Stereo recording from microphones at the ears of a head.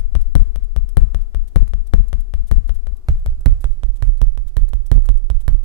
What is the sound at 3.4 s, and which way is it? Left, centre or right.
Music, right.